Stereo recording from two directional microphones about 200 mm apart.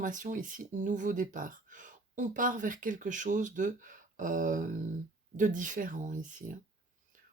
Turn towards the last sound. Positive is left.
turn(degrees=-40)  # may be behind; listen again after turning